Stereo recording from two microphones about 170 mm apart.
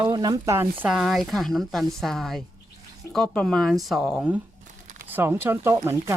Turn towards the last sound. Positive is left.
turn(degrees=-15)  # may be behind; listen again after turning